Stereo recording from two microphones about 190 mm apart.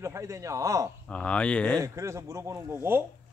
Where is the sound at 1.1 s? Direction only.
5° left (ahead or behind).